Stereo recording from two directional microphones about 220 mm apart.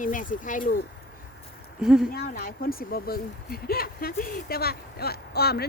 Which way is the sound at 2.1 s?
45° left (ahead or behind).